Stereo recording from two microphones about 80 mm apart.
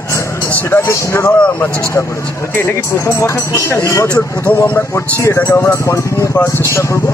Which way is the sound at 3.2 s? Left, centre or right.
Left.